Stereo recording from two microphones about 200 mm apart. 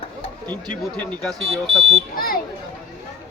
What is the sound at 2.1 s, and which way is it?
Speech, 45° left (ahead or behind).